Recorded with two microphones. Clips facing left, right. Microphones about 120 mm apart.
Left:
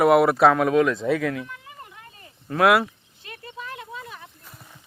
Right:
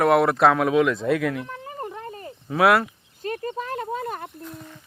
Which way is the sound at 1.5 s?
40° right (ahead or behind).